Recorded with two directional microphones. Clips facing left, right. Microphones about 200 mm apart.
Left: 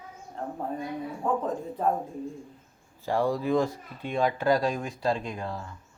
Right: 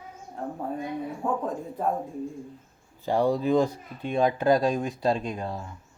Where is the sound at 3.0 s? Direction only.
20° right (ahead or behind).